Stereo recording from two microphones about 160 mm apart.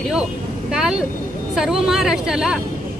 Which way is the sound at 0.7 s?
5° right (ahead or behind).